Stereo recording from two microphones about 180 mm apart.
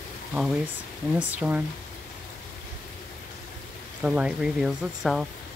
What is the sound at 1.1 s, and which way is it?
Speech, 5° right (ahead or behind).